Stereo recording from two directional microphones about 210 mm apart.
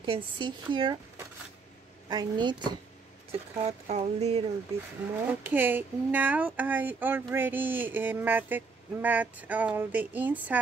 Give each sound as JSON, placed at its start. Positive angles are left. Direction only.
{"t": 0.0, "sound": "speech", "side_deg": -25}
{"t": 5.4, "sound": "speech", "side_deg": -10}